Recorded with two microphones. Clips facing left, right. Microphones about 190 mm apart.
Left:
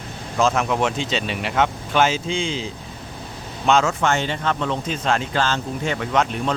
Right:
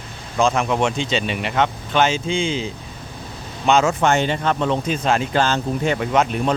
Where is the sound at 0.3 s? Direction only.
Centre (ahead or behind).